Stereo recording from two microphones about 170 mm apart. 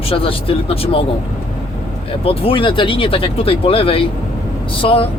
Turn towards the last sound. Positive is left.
turn(degrees=35)  # may be behind; listen again after turning